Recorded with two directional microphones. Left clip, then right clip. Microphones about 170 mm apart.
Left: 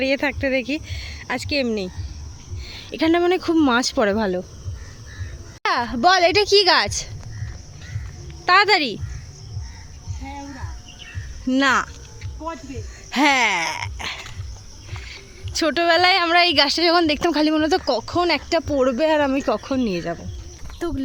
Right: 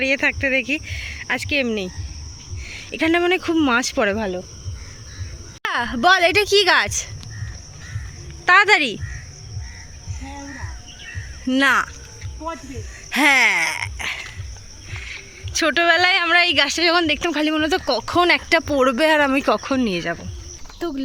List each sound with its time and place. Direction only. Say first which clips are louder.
0.0 s speech: right 2 dB; 15° left (ahead or behind)
4.2 s speech: left 2 dB; 40° left (ahead or behind)
5.6 s speech: even; centre (ahead or behind)
8.4 s speech: right 2 dB; centre (ahead or behind)
11.4 s speech: right 1 dB; 5° left (ahead or behind); by 17.8 s 20° left (ahead or behind)
18.0 s speech: right 4 dB; 5° right (ahead or behind)